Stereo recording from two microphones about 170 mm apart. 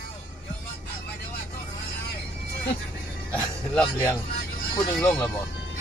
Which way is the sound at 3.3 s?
5° left (ahead or behind).